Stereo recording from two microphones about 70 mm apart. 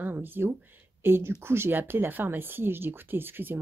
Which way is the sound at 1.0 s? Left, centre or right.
Right.